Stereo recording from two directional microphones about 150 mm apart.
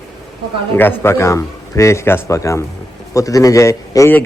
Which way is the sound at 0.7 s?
15° left (ahead or behind).